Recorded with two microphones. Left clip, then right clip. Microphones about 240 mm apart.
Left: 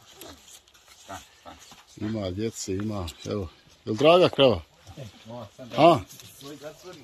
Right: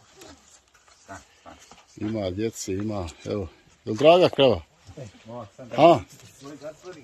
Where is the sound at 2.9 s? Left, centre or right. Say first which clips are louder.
Right 2 dB; centre.